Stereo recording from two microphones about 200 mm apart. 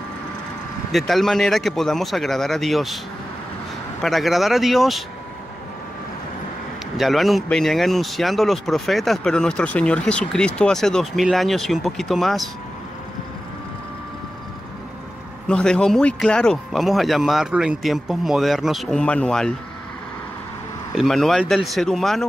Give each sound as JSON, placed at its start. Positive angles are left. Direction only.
{"t": 0.9, "sound": "speech", "side_deg": 0}
{"t": 4.0, "sound": "speech", "side_deg": 0}
{"t": 7.0, "sound": "speech", "side_deg": 0}
{"t": 15.4, "sound": "speech", "side_deg": 5}
{"t": 20.9, "sound": "speech", "side_deg": 0}